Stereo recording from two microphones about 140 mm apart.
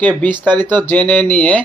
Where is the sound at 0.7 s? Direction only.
15° left (ahead or behind).